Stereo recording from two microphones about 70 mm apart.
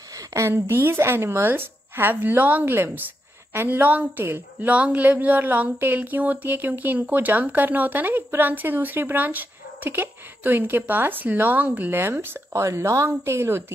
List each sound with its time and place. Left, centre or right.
0.3 s a woman's voice: right
12.5 s a woman's voice: right